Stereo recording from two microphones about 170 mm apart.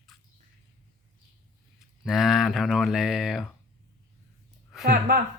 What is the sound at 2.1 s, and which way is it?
Speech, centre (ahead or behind).